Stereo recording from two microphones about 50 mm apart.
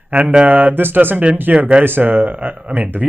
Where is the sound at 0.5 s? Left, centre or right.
Right.